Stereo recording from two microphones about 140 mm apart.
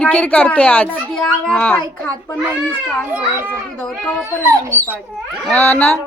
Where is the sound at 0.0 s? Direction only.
10° left (ahead or behind).